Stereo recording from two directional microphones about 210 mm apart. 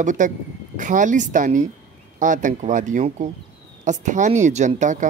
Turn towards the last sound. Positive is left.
turn(degrees=-35)  # may be behind; listen again after turning